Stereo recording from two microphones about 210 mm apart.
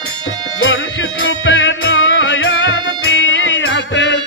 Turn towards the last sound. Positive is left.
turn(degrees=60)  # may be behind; listen again after turning